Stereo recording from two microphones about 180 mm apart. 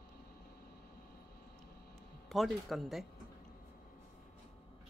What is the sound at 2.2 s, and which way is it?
Speech, centre (ahead or behind).